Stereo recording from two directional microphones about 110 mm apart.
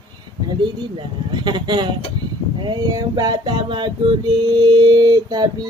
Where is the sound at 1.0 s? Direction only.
40° right (ahead or behind).